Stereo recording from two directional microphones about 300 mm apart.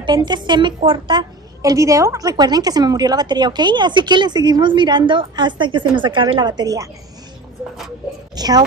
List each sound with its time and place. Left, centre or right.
0.0 s a woman's voice: centre
8.4 s a woman's voice: centre